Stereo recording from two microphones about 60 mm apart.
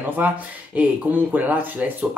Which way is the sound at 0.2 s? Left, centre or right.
Right.